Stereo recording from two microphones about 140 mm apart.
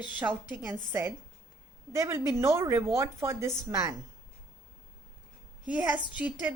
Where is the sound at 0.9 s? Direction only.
20° right (ahead or behind).